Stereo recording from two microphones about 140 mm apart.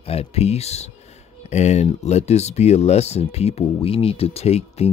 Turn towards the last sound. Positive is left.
turn(degrees=50)  # may be behind; listen again after turning